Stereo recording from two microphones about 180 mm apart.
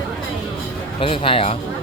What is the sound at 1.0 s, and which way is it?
Speech, 30° left (ahead or behind).